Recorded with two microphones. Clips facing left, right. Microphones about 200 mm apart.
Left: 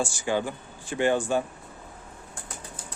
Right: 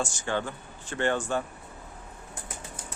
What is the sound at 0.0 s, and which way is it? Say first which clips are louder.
Speech: left 3 dB; 10° left (ahead or behind).